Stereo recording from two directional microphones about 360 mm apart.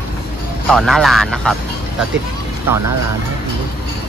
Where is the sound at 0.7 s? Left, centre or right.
Centre.